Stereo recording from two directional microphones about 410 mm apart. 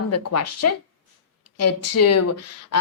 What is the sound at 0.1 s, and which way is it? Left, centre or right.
Speech, left.